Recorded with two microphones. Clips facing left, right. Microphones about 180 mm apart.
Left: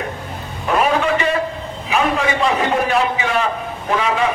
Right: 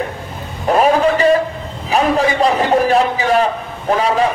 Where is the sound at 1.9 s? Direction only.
35° right (ahead or behind).